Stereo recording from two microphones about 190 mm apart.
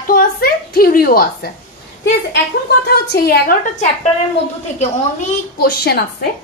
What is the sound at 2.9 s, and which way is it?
A woman's voice, 55° left (ahead or behind).